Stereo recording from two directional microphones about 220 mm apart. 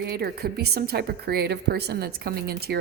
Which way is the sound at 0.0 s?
45° right (ahead or behind).